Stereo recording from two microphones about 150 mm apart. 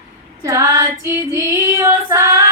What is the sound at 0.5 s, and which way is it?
Female singing, 20° right (ahead or behind).